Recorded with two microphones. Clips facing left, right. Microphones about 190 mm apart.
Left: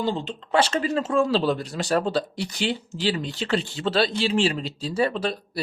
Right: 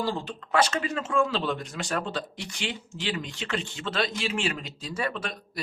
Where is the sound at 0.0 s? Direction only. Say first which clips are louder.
Left 3 dB; 20° left (ahead or behind).